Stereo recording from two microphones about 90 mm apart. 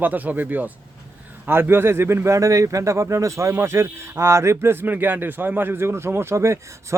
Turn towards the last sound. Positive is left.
turn(degrees=-30)  # may be behind; listen again after turning